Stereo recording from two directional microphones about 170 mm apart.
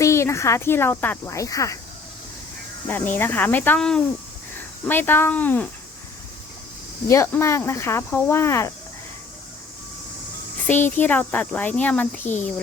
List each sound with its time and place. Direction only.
0.0 s speech: 15° left (ahead or behind)
2.8 s speech: 10° left (ahead or behind)
7.1 s speech: 15° left (ahead or behind)
10.7 s speech: 10° left (ahead or behind)